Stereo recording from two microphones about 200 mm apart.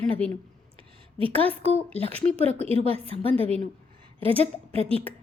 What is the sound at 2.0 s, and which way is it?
A woman's voice, 30° right (ahead or behind).